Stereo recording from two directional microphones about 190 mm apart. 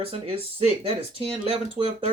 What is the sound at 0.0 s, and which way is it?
Speech, 30° right (ahead or behind).